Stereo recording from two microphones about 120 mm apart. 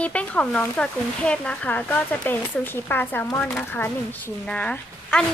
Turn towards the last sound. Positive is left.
turn(degrees=10)  # may be behind; listen again after turning